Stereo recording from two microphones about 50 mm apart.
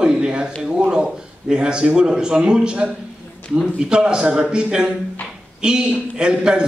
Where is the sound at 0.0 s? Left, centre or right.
Centre.